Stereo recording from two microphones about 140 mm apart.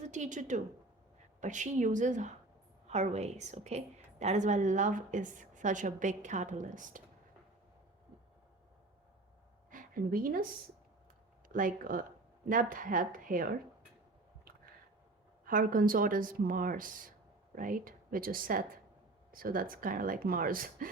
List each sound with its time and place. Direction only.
0.1 s a woman's voice: 60° right (ahead or behind)
9.6 s a sound: 80° right
11.4 s a woman's voice: 75° right (ahead or behind)
15.4 s speech: 75° right (ahead or behind)